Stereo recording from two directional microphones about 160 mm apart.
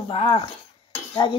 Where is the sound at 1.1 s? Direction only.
30° left (ahead or behind).